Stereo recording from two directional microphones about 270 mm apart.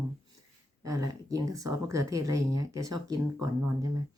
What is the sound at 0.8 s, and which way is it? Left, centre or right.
Speech, centre.